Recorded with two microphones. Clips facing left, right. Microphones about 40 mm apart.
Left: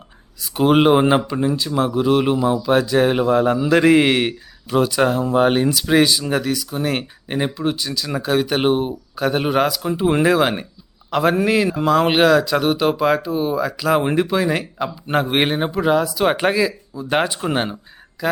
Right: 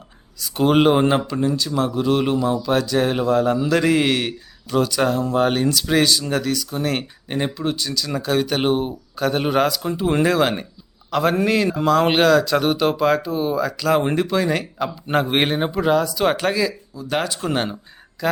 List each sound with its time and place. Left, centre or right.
0.3 s speech: centre
16.4 s speech: centre
17.4 s speech: centre